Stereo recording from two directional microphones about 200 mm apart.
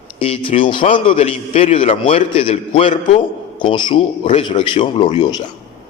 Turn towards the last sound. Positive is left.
turn(degrees=20)  # may be behind; listen again after turning